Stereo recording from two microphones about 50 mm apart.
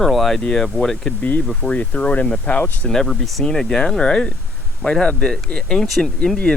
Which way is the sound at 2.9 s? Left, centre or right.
Centre.